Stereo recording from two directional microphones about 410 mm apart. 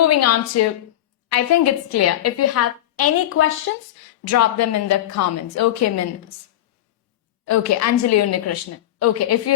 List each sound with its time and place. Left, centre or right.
0.0 s a woman's voice: left
7.4 s a woman's voice: left